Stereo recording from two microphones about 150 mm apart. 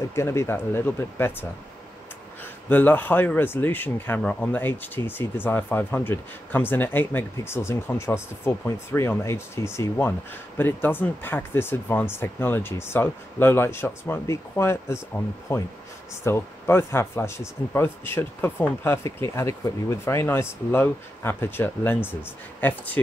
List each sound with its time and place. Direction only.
0.1 s speech: 15° left (ahead or behind)
2.7 s speech: 10° left (ahead or behind)